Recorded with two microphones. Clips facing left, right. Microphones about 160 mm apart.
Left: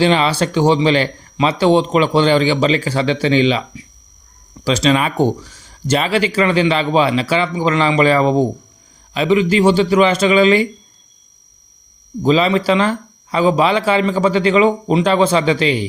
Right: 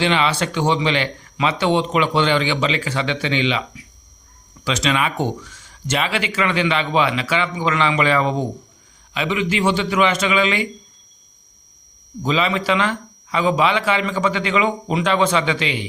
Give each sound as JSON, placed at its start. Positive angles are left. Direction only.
{"t": 0.0, "sound": "speech", "side_deg": 35}
{"t": 12.2, "sound": "speech", "side_deg": 35}